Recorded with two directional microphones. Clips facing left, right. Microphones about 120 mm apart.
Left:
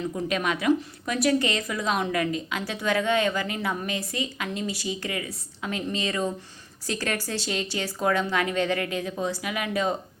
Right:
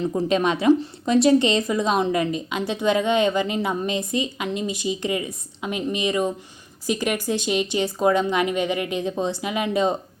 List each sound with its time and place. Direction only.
0.0 s a woman's voice: 30° right (ahead or behind)